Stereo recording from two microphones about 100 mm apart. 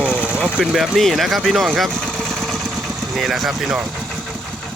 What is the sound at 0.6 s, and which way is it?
Speech, 5° right (ahead or behind).